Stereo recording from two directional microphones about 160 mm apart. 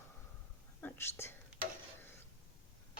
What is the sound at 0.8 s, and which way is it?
Whispering, 15° left (ahead or behind).